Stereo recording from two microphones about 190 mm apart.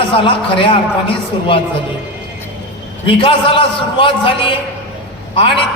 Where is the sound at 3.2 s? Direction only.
30° left (ahead or behind).